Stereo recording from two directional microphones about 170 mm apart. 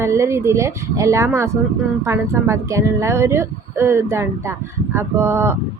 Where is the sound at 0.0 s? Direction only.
15° right (ahead or behind).